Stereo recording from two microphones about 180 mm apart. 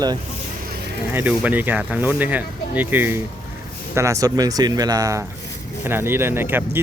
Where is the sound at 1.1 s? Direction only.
10° right (ahead or behind).